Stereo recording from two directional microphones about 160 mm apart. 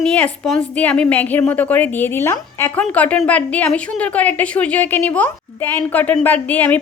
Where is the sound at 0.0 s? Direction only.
5° left (ahead or behind).